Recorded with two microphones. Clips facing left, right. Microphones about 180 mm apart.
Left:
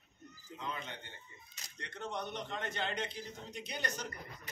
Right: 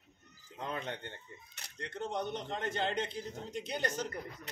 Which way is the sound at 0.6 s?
60° right (ahead or behind).